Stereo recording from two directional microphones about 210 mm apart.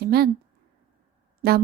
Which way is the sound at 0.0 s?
45° right (ahead or behind).